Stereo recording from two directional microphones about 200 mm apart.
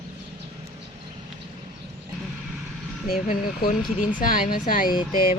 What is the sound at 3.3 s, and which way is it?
Speech, 45° left (ahead or behind).